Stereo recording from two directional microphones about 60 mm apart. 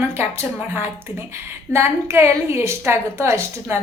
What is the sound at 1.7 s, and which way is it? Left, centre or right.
A woman's voice, right.